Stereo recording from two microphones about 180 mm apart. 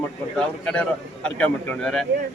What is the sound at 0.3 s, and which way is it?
A man's voice, 5° left (ahead or behind).